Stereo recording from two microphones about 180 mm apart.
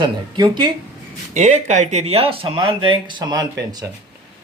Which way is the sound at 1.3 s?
40° right (ahead or behind).